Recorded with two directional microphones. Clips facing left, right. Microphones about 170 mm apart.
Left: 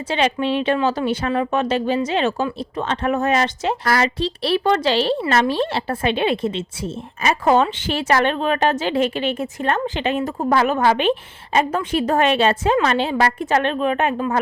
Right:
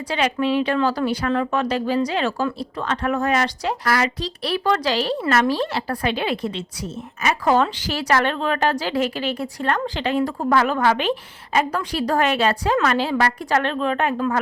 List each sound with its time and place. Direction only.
0.1 s a woman's voice: 25° left (ahead or behind)